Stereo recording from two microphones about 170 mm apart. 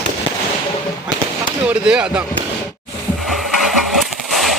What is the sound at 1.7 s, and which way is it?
Speech, 5° right (ahead or behind).